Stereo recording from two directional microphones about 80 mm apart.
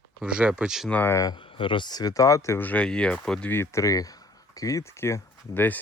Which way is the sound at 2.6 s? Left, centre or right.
Centre.